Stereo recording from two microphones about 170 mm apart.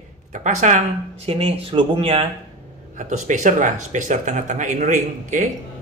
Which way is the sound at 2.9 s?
45° right (ahead or behind).